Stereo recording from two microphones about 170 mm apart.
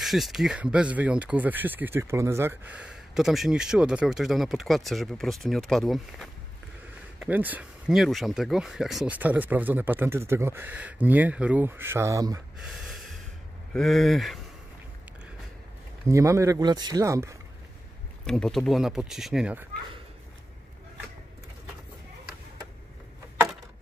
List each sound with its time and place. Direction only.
0.0 s speech: centre (ahead or behind)
7.2 s speech: 10° right (ahead or behind)
12.6 s snort: centre (ahead or behind)
13.7 s speech: centre (ahead or behind)
16.1 s speech: 15° right (ahead or behind)
18.2 s speech: centre (ahead or behind)